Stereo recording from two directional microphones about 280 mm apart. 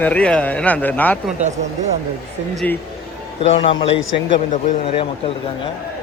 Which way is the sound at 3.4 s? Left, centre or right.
Left.